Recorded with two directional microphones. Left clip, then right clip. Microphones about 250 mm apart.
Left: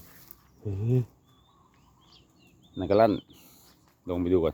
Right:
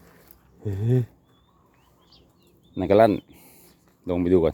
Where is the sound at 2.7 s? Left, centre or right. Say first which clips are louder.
Right 5 dB; right; by 3.6 s centre.